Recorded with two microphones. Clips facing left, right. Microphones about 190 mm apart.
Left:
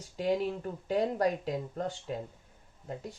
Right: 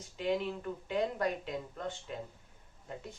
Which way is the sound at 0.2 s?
40° left (ahead or behind).